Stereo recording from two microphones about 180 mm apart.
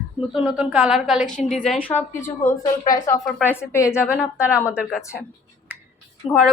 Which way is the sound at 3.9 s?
5° right (ahead or behind).